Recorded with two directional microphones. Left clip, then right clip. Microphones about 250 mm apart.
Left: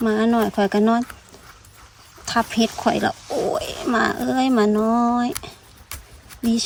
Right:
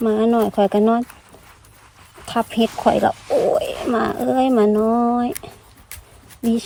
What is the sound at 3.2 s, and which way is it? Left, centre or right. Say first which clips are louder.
Speech: right 6 dB; right.